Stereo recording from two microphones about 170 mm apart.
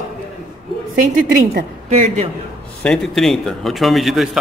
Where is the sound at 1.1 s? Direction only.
65° right (ahead or behind).